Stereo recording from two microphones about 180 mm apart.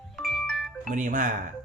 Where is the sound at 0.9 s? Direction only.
45° right (ahead or behind).